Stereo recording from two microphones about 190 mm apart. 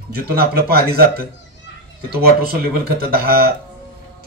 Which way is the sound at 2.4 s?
50° right (ahead or behind).